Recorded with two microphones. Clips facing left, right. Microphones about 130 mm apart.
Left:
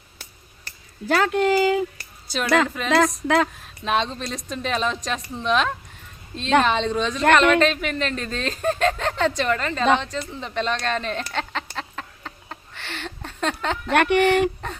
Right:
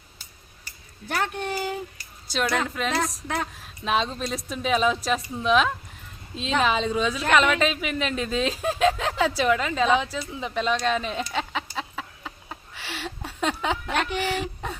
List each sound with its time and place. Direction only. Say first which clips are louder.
0.2 s a sound: left 7 dB; 80° left
2.2 s speech: left 5 dB; centre (ahead or behind)
3.2 s speech: left 9 dB; 90° left
3.6 s speech: left 2 dB; centre (ahead or behind)
10.0 s a sound: even; 5° right (ahead or behind)
13.9 s speech: left 13 dB; 65° left (ahead or behind)